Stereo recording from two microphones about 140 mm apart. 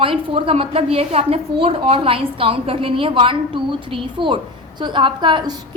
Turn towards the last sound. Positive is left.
turn(degrees=-35)  # may be behind; listen again after turning